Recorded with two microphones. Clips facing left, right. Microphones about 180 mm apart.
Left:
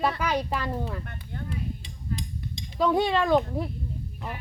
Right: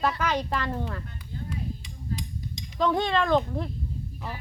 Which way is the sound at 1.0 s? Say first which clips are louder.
Left 1 dB; 65° left (ahead or behind).